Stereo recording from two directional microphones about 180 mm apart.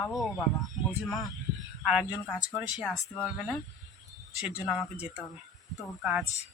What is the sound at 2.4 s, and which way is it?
Speech, 20° left (ahead or behind).